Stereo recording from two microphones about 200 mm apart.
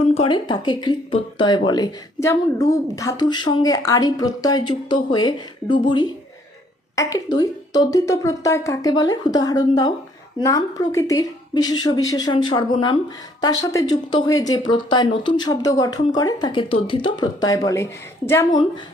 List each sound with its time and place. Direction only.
0.1 s a woman's voice: 25° left (ahead or behind)